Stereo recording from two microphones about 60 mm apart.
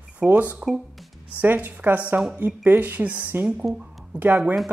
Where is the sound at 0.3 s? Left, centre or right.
Right.